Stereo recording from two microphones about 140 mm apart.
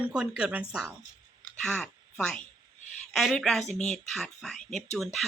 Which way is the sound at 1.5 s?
5° left (ahead or behind).